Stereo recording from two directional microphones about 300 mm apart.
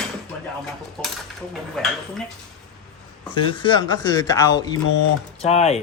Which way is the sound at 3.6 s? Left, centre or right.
Centre.